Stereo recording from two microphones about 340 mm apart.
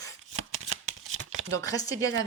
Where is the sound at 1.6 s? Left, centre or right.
Centre.